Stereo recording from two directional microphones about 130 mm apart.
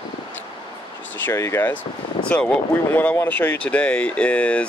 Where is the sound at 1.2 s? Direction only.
20° left (ahead or behind).